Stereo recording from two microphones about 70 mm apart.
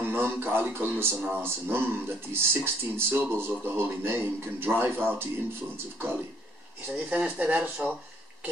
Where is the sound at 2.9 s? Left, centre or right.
Right.